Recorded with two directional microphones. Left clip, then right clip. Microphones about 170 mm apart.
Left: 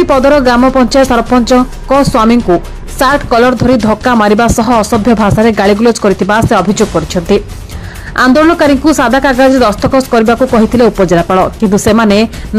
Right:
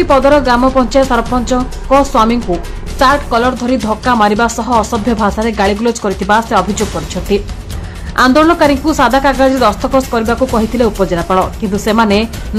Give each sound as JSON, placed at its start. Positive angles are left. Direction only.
{"t": 0.1, "sound": "speech", "side_deg": 40}